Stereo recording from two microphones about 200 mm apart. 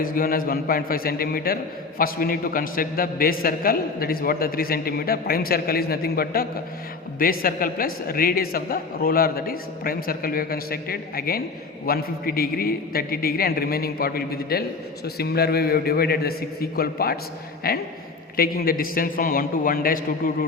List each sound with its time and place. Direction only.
0.0 s a man's voice: 45° left (ahead or behind)